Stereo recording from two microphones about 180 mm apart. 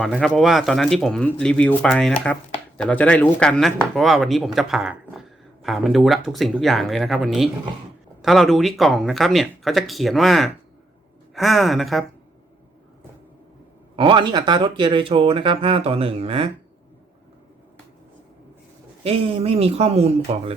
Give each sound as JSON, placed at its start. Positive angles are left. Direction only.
{"t": 0.0, "sound": "speech", "side_deg": 5}
{"t": 13.9, "sound": "speech", "side_deg": -30}
{"t": 19.0, "sound": "speech", "side_deg": -35}